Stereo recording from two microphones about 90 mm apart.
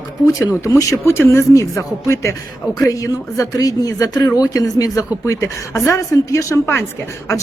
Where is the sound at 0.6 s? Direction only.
40° left (ahead or behind).